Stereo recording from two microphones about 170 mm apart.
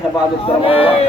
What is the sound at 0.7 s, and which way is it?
Speech, 35° left (ahead or behind).